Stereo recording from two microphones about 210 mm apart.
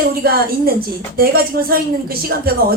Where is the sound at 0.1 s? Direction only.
45° right (ahead or behind).